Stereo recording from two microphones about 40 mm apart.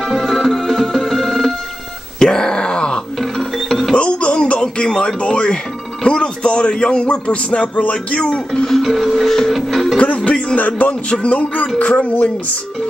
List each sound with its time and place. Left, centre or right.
0.1 s music: centre
2.1 s groan: centre
3.2 s music: centre
3.9 s music: left
6.0 s speech: left
8.6 s music: centre
9.9 s music: left